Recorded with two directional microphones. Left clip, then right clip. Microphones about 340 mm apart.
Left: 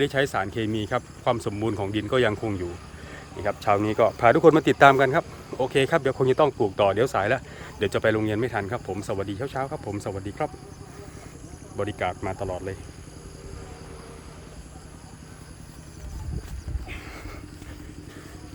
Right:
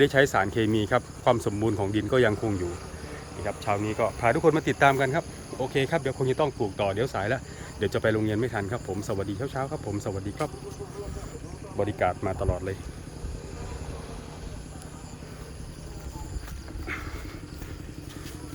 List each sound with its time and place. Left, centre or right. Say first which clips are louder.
0.0 s speech: right 3 dB; centre
11.8 s speech: right 2 dB; centre